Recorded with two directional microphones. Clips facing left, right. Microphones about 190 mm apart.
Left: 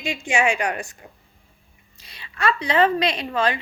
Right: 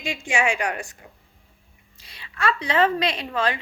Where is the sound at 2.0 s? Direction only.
20° left (ahead or behind).